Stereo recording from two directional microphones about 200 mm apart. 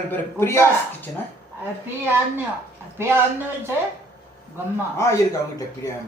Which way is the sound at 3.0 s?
10° right (ahead or behind).